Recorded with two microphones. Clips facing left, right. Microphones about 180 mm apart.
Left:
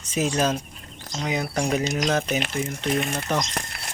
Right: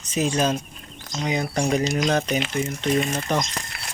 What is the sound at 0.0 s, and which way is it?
Speech, 10° left (ahead or behind).